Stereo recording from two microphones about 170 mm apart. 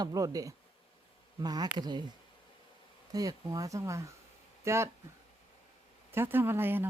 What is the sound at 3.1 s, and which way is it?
Speech, 20° right (ahead or behind).